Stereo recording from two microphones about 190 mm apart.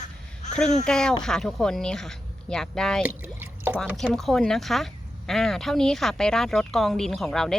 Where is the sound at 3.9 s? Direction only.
Centre (ahead or behind).